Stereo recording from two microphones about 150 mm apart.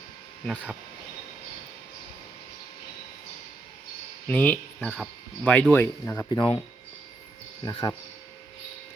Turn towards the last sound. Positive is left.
turn(degrees=25)  # may be behind; listen again after turning